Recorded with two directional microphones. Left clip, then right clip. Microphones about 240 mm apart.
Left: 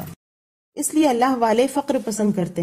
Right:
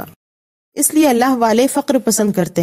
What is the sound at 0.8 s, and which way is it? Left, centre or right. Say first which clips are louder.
Speech: right 5 dB; right.